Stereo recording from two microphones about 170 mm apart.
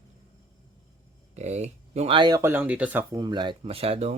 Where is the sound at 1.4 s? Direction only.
40° right (ahead or behind).